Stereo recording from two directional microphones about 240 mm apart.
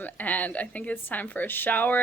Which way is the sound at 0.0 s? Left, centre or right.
Centre.